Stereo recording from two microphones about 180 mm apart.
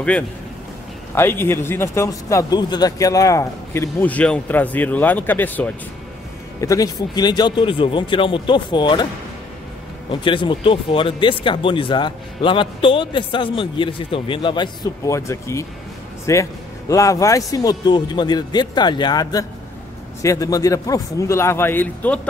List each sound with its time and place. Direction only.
1.1 s a man's voice: 10° left (ahead or behind)
10.2 s a man's voice: 25° left (ahead or behind); by 22.3 s 10° left (ahead or behind)